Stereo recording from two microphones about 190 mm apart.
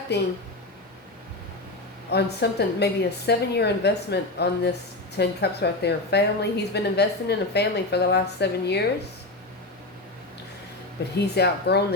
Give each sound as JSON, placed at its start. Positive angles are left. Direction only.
{"t": 0.1, "sound": "a woman's voice", "side_deg": 60}
{"t": 2.0, "sound": "a woman's voice", "side_deg": 60}
{"t": 11.1, "sound": "a woman's voice", "side_deg": 60}